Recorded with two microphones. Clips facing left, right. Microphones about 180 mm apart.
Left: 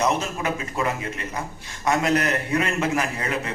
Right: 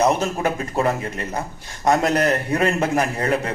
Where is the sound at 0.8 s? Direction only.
35° right (ahead or behind).